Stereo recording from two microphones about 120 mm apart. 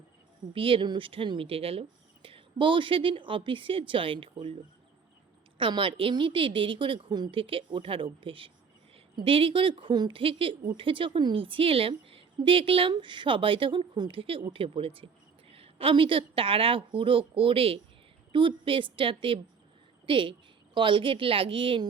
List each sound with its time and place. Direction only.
0.5 s speech: 50° right (ahead or behind)
5.5 s a woman's voice: 45° right (ahead or behind)